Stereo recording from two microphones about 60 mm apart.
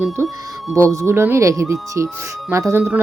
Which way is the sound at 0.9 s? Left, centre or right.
Right.